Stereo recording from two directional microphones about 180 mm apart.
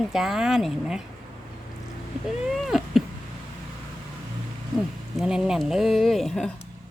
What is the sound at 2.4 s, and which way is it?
Cat, centre (ahead or behind).